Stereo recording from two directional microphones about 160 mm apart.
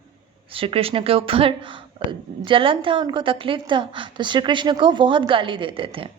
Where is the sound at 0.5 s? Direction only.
35° right (ahead or behind).